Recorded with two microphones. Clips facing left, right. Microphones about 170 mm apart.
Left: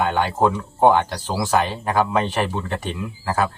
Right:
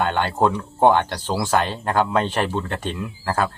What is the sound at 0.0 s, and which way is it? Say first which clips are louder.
Speech: left 1 dB; 10° left (ahead or behind).